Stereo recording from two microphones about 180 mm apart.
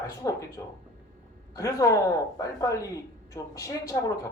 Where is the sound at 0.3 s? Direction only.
20° left (ahead or behind).